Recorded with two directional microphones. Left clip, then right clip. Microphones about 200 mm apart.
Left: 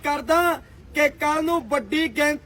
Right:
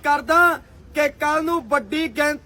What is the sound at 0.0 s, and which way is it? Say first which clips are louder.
A man's voice: right 4 dB; centre (ahead or behind).